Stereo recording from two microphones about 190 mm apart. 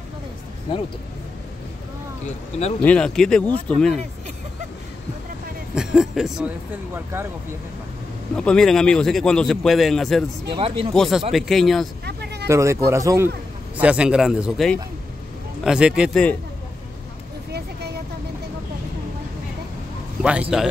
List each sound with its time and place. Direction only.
2.8 s a man's voice: 5° left (ahead or behind)
5.8 s a man's voice: 5° right (ahead or behind)
8.4 s a man's voice: 5° left (ahead or behind)
10.5 s speech: 30° right (ahead or behind)
10.9 s a man's voice: centre (ahead or behind)
12.0 s a sound: 60° right (ahead or behind)
12.4 s a man's voice: 15° right (ahead or behind); by 16.3 s 5° left (ahead or behind)
20.2 s a man's voice: 5° right (ahead or behind)